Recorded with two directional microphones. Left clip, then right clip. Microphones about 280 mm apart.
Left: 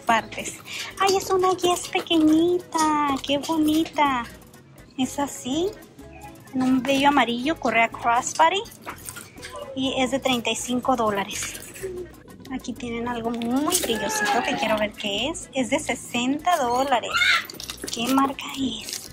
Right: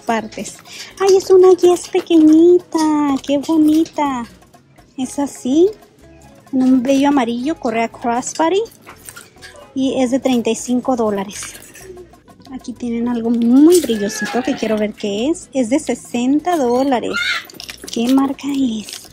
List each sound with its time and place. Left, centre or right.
0.0 s speech: right
6.8 s speech: right
9.8 s speech: right
12.4 s speech: centre
17.6 s a sound: centre
18.1 s speech: right